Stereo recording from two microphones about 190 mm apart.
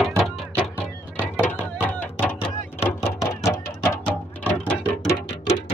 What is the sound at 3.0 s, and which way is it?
Music, 15° left (ahead or behind).